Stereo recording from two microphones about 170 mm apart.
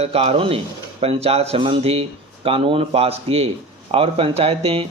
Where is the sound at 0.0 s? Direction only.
35° right (ahead or behind).